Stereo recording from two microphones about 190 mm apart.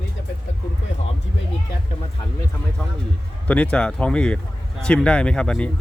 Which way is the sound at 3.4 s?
10° left (ahead or behind).